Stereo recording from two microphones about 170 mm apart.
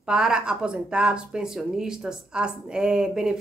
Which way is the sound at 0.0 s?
5° right (ahead or behind).